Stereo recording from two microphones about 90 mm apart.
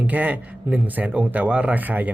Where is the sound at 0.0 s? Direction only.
15° right (ahead or behind).